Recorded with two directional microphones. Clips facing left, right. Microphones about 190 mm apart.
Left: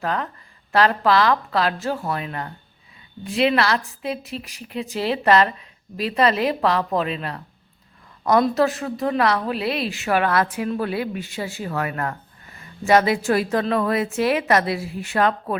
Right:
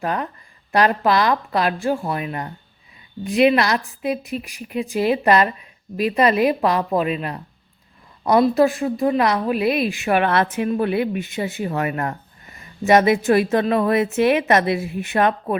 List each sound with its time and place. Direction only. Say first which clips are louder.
0.0 s a woman's voice: right 1 dB; 15° right (ahead or behind)